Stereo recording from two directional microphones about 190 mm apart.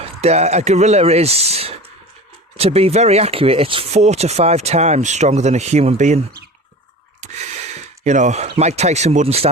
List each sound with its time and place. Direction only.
0.0 s speech: 35° right (ahead or behind)
8.0 s speech: 40° right (ahead or behind)